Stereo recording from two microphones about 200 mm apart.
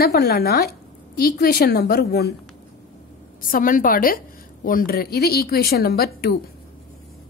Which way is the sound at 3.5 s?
45° left (ahead or behind).